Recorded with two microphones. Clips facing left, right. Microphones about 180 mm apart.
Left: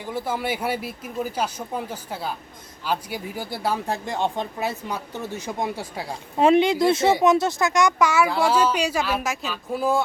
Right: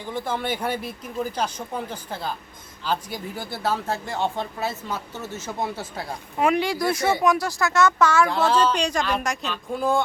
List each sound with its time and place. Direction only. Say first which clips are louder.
0.0 s speech: left 1 dB; 10° left (ahead or behind)
6.4 s speech: left 5 dB; 25° left (ahead or behind); by 10.0 s 5° left (ahead or behind)